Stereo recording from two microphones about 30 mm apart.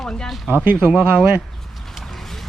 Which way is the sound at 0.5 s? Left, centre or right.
Right.